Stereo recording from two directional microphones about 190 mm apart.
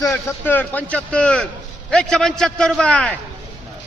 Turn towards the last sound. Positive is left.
turn(degrees=5)  # may be behind; listen again after turning